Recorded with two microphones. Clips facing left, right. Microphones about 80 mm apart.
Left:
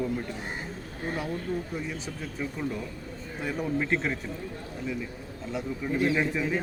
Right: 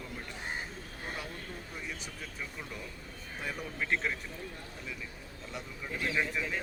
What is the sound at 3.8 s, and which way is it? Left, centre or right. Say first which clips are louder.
Speech: left 1 dB; centre.